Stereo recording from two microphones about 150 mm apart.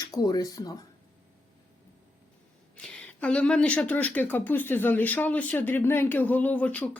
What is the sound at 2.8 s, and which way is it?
Speech, 5° left (ahead or behind).